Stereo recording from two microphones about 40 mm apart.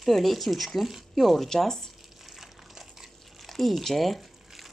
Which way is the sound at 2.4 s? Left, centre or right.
Centre.